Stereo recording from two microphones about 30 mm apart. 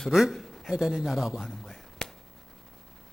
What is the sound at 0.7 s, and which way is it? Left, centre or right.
Speech, centre.